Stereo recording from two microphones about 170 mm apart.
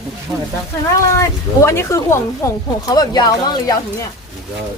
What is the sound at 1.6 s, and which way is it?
Speech, 15° left (ahead or behind).